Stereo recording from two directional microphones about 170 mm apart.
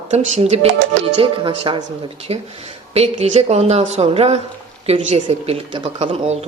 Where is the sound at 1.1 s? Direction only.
30° right (ahead or behind).